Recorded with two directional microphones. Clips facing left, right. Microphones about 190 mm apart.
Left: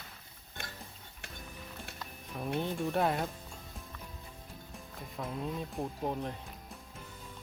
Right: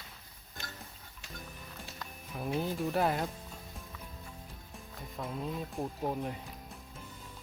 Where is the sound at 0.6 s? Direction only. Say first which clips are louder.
Left 1 dB; 55° left (ahead or behind).